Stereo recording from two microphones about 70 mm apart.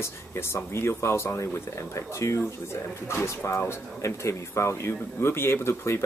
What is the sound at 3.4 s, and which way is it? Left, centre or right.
Speech, left.